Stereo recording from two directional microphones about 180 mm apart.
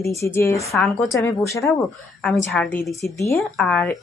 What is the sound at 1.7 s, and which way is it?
Speech, centre (ahead or behind).